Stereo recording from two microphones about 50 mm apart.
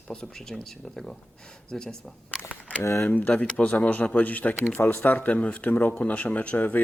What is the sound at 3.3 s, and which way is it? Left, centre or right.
Speech, left.